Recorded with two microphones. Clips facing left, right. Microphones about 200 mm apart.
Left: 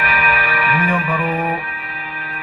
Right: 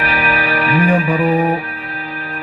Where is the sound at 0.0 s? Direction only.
35° right (ahead or behind).